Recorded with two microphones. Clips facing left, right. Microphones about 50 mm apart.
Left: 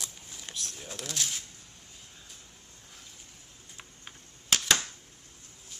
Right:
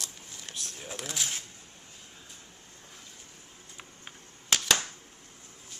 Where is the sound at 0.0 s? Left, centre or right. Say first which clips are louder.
Even; centre.